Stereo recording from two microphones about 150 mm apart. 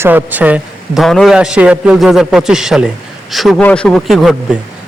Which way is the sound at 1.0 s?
Centre (ahead or behind).